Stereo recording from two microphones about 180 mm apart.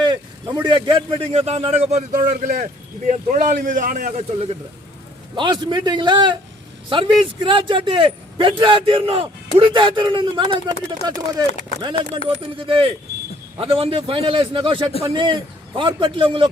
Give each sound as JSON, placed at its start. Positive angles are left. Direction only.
{"t": 0.6, "sound": "a man's voice", "side_deg": -25}
{"t": 5.3, "sound": "a man's voice", "side_deg": -25}